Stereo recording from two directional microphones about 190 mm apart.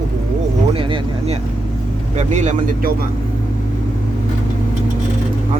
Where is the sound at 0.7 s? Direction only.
25° right (ahead or behind).